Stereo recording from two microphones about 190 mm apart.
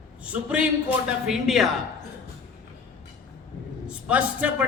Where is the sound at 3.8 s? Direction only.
5° right (ahead or behind).